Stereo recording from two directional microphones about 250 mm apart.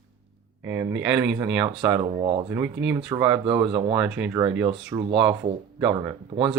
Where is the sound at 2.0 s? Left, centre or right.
Right.